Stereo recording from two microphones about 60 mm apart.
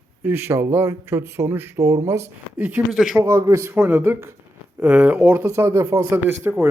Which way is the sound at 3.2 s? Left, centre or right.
Right.